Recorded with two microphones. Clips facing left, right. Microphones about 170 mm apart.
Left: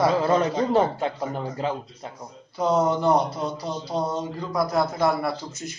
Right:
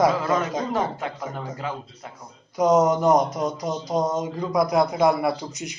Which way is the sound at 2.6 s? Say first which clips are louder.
Right 3 dB; 15° right (ahead or behind).